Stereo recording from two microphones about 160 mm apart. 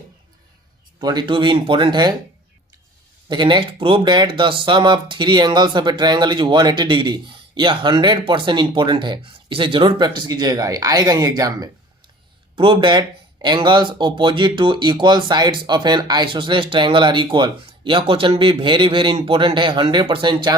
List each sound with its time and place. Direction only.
0.9 s speech: 25° right (ahead or behind)
3.2 s speech: 30° right (ahead or behind)